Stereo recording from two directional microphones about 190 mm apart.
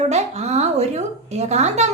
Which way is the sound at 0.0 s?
35° right (ahead or behind).